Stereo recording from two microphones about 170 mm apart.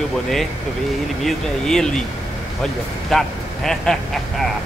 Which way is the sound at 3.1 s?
Centre (ahead or behind).